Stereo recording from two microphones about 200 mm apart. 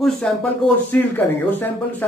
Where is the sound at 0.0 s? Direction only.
5° left (ahead or behind).